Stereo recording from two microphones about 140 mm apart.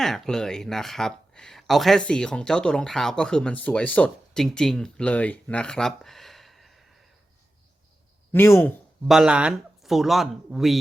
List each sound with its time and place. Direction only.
0.0 s speech: 5° left (ahead or behind)
8.3 s speech: 15° left (ahead or behind)
9.0 s speech: 5° right (ahead or behind)